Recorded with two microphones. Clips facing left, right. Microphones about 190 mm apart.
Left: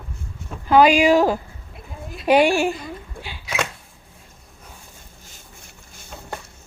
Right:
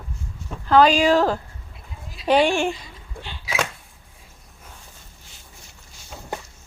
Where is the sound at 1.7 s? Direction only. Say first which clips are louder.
Left 8 dB; 55° left (ahead or behind).